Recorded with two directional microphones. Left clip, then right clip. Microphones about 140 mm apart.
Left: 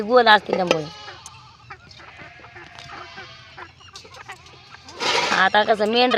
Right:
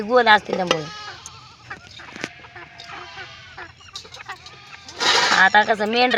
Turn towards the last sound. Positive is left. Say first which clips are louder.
# left 1 dB
turn(degrees=20)  # may be behind; listen again after turning